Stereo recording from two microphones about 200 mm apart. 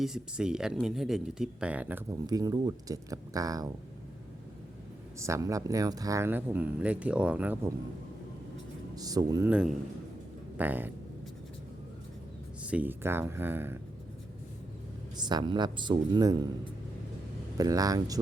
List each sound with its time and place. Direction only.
0.0 s speech: 5° right (ahead or behind)
5.2 s speech: 15° right (ahead or behind)
9.0 s speech: 20° right (ahead or behind)
12.6 s speech: 10° right (ahead or behind)
15.2 s speech: 20° right (ahead or behind)
17.6 s speech: 20° right (ahead or behind)